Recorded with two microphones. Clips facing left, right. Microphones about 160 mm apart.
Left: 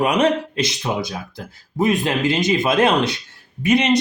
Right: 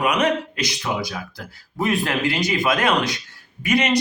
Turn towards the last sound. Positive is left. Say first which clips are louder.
# left 4 dB
turn(degrees=25)  # may be behind; listen again after turning